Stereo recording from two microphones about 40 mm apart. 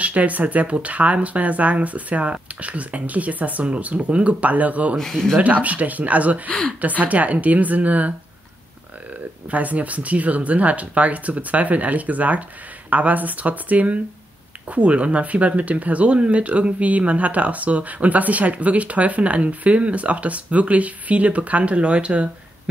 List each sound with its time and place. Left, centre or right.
0.0 s speech: right
4.9 s speech: centre
5.4 s speech: right
9.5 s speech: right